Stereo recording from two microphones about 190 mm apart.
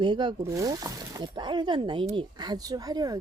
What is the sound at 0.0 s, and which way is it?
Speech, 25° right (ahead or behind).